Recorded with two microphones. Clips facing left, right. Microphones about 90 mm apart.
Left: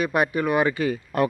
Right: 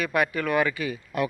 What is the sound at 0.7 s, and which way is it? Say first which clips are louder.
Speech: left 5 dB; 35° left (ahead or behind).